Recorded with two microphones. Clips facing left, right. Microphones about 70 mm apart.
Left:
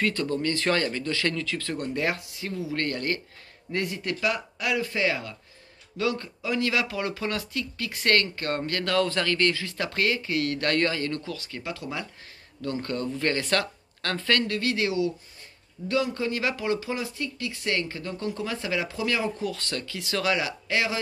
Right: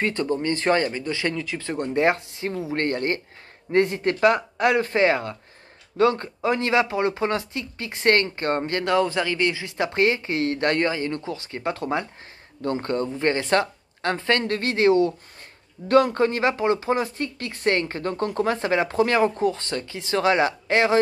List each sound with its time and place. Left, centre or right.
0.0 s speech: right
14.4 s speech: right